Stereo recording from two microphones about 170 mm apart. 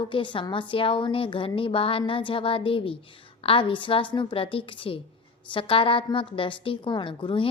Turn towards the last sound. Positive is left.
turn(degrees=30)  # may be behind; listen again after turning